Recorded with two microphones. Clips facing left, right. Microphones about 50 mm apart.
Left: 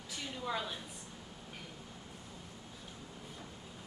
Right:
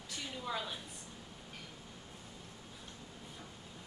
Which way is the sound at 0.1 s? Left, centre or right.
Centre.